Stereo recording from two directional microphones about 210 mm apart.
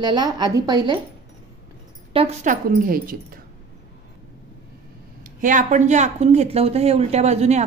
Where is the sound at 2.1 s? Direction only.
30° right (ahead or behind).